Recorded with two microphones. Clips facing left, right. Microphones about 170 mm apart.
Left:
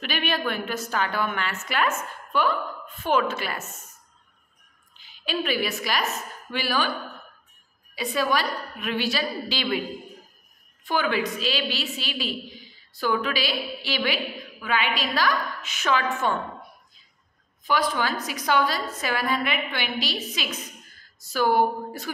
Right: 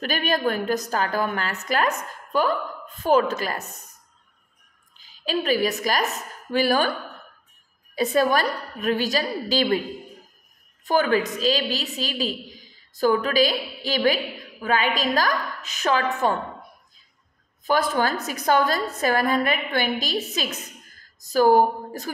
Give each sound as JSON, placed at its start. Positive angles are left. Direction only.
{"t": 0.0, "sound": "a woman's voice", "side_deg": -40}
{"t": 4.9, "sound": "a woman's voice", "side_deg": -35}
{"t": 7.9, "sound": "a woman's voice", "side_deg": -45}
{"t": 10.9, "sound": "a woman's voice", "side_deg": -40}
{"t": 17.6, "sound": "a woman's voice", "side_deg": -45}